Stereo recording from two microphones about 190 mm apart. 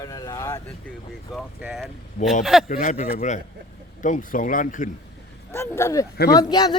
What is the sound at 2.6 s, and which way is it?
A man's voice, 45° left (ahead or behind).